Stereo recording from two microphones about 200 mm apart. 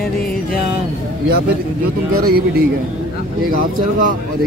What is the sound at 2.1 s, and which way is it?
Speech, 50° right (ahead or behind).